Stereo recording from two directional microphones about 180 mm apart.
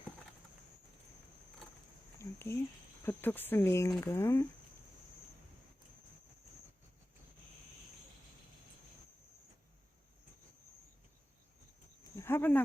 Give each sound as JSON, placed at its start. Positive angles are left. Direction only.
{"t": 2.1, "sound": "a sound", "side_deg": 15}
{"t": 3.0, "sound": "speech", "side_deg": 10}
{"t": 12.1, "sound": "cricket", "side_deg": 15}